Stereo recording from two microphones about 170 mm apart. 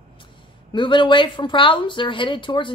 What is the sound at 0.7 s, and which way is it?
Speech, 30° left (ahead or behind).